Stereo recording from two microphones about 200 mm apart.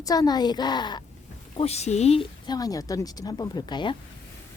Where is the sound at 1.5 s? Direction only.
30° left (ahead or behind).